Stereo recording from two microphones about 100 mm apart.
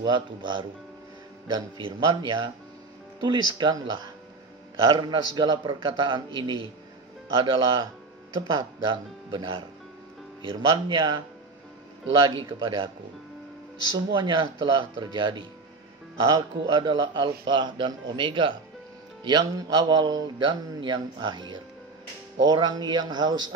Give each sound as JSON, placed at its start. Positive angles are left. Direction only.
{"t": 0.0, "sound": "a man's voice", "side_deg": -50}
{"t": 12.2, "sound": "a man's voice", "side_deg": -55}
{"t": 13.9, "sound": "a man's voice", "side_deg": -50}
{"t": 19.2, "sound": "a man's voice", "side_deg": -45}